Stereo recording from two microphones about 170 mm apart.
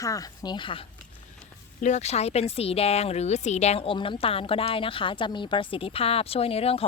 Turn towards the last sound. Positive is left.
turn(degrees=35)  # may be behind; listen again after turning